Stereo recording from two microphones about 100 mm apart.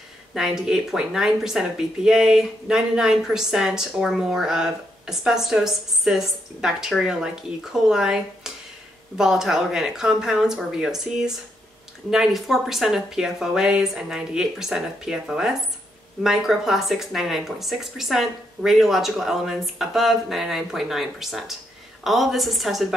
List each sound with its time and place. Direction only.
0.3 s speech: 5° right (ahead or behind)